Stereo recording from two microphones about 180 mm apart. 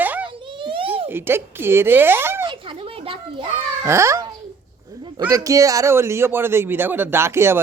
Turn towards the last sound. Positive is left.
turn(degrees=-15)  # may be behind; listen again after turning